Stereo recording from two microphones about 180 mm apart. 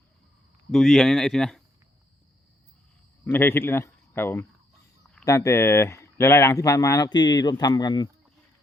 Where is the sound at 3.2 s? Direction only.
10° left (ahead or behind).